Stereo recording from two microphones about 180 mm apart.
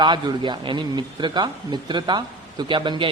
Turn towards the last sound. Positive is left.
turn(degrees=-25)  # may be behind; listen again after turning